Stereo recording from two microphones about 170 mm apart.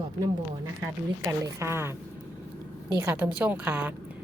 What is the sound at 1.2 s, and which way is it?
Speech, 15° right (ahead or behind).